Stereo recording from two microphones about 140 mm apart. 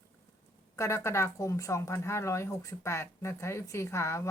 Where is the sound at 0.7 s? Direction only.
20° left (ahead or behind).